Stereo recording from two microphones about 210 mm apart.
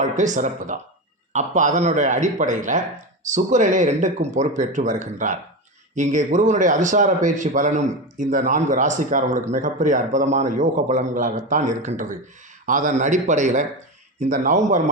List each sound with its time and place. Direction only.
0.0 s a man's voice: 35° right (ahead or behind)